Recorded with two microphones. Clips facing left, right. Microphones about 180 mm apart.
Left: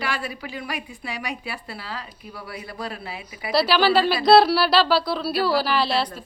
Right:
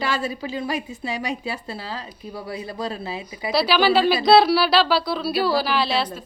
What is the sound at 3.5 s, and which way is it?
A woman's voice, 5° left (ahead or behind).